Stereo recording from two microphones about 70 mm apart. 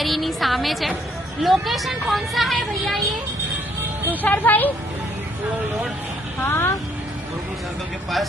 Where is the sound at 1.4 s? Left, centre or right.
Centre.